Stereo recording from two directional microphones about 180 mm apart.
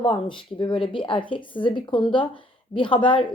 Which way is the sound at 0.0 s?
30° left (ahead or behind).